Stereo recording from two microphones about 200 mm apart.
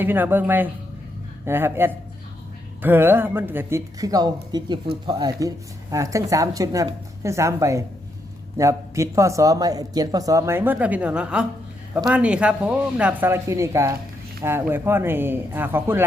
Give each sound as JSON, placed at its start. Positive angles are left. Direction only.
{"t": 0.0, "sound": "speech", "side_deg": -10}